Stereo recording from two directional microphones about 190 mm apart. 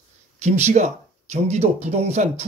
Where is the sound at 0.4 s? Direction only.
35° right (ahead or behind).